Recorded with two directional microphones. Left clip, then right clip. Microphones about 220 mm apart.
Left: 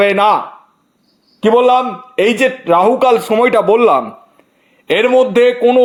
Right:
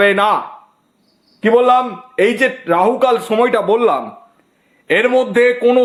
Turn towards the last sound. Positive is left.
turn(degrees=0)  # may be behind; listen again after turning